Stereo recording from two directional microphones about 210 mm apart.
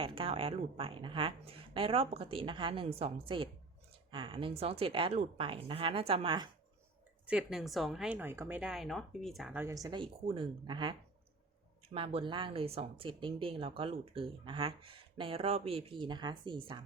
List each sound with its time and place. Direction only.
0.0 s speech: 25° right (ahead or behind)
7.3 s a woman's voice: 5° right (ahead or behind); by 10.9 s 20° right (ahead or behind)
11.9 s speech: 25° right (ahead or behind)